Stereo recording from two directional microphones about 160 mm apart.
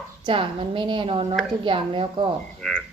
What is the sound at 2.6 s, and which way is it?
Speech, centre (ahead or behind).